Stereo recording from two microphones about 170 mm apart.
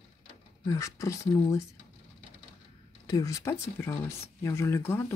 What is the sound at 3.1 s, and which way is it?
Speech, 20° left (ahead or behind).